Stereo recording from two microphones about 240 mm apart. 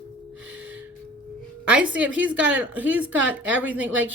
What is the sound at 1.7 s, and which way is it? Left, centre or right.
A woman's voice, centre.